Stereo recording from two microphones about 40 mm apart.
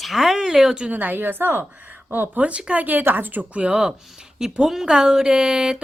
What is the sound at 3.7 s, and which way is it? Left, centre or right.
Speech, right.